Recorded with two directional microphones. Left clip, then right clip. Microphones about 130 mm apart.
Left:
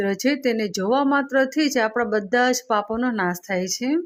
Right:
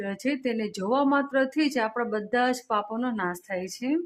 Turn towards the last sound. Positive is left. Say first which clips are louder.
# left 6 dB
turn(degrees=30)  # may be behind; listen again after turning